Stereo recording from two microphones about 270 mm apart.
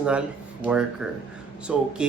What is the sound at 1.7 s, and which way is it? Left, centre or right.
Speech, centre.